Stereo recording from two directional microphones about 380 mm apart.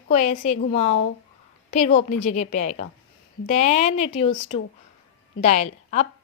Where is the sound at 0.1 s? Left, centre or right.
Centre.